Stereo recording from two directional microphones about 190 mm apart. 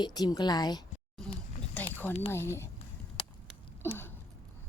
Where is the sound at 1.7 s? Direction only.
10° left (ahead or behind).